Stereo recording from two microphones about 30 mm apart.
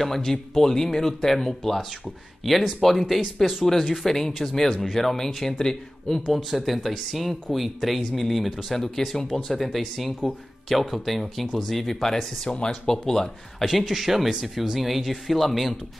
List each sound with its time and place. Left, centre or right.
0.0 s speech: centre
2.4 s speech: centre
2.8 s speech: centre
6.3 s speech: centre
12.0 s speech: centre
12.4 s speech: left
12.8 s speech: centre
13.7 s speech: centre